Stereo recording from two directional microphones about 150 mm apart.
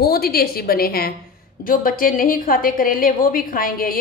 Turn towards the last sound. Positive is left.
turn(degrees=70)  # may be behind; listen again after turning